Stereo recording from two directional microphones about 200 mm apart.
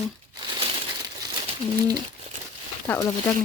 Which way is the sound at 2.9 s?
5° left (ahead or behind).